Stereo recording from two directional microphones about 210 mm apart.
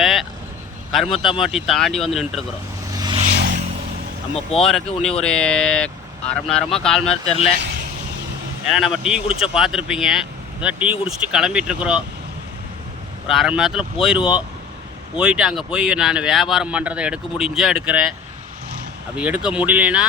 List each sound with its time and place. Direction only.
0.0 s vehicle: centre (ahead or behind)
1.1 s speech: 25° left (ahead or behind)
1.4 s speech: centre (ahead or behind)
2.9 s vehicle: 20° right (ahead or behind)
3.3 s vehicle: 45° right (ahead or behind)
4.5 s speech: 30° left (ahead or behind)
5.2 s speech: 5° left (ahead or behind)
7.1 s speech: 30° left (ahead or behind)
8.7 s speech: centre (ahead or behind)
13.2 s speech: 5° right (ahead or behind)
19.1 s speech: 5° right (ahead or behind)